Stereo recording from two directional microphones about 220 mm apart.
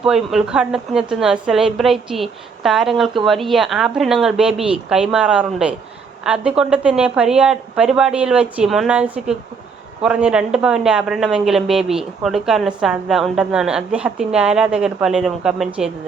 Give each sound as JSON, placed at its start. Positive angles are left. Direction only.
{"t": 0.0, "sound": "speech", "side_deg": 0}